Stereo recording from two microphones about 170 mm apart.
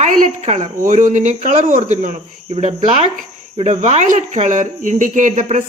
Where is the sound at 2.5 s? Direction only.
40° right (ahead or behind).